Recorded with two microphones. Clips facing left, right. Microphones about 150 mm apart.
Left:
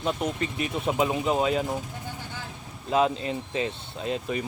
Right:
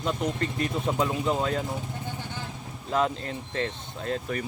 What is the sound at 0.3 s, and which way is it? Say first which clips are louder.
Speech: right 1 dB; 10° left (ahead or behind).